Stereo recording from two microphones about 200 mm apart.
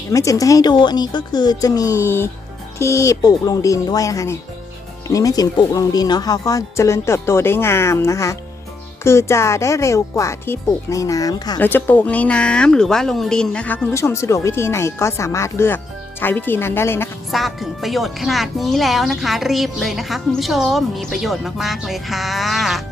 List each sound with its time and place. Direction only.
0.1 s speech: 15° left (ahead or behind)
11.7 s speech: 10° left (ahead or behind)
17.3 s speech: centre (ahead or behind)